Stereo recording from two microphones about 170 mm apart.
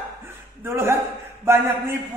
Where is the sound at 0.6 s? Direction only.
15° right (ahead or behind).